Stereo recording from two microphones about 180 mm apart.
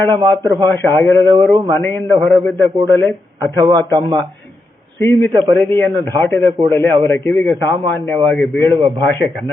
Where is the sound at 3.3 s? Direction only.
20° right (ahead or behind).